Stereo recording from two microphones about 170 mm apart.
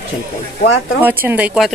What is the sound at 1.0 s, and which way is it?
Speech, 10° right (ahead or behind).